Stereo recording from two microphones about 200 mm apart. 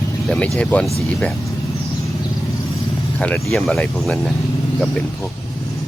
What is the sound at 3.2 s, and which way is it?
Speech, 5° left (ahead or behind).